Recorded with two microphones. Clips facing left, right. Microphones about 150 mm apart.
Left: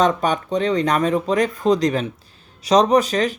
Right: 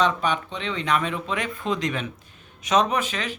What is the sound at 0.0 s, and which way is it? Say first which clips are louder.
Speech: left 5 dB; 45° left (ahead or behind).